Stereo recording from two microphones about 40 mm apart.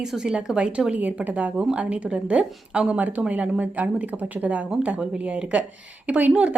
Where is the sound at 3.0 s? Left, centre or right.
Right.